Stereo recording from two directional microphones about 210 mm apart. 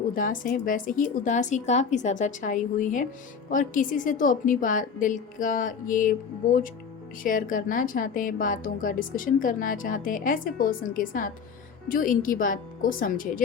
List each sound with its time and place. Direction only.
0.1 s a woman's voice: 40° left (ahead or behind)